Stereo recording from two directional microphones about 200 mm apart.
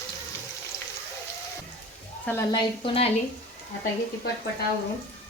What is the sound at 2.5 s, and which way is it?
Speech, 25° left (ahead or behind).